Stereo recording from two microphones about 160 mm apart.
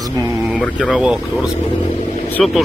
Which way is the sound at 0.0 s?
20° right (ahead or behind).